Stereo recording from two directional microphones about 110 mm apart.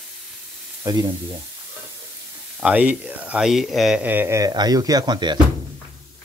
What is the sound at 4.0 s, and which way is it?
Speech, 15° right (ahead or behind).